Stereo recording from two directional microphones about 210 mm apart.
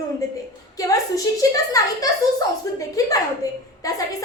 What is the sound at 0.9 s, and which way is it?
A woman's voice, 15° left (ahead or behind).